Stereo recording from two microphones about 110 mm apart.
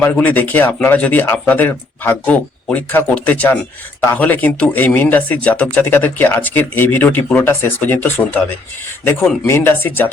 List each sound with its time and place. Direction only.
0.0 s speech: 15° left (ahead or behind)
9.5 s speech: 20° left (ahead or behind)